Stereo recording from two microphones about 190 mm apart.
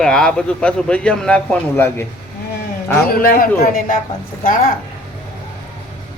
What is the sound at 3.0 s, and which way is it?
Speech, 50° left (ahead or behind).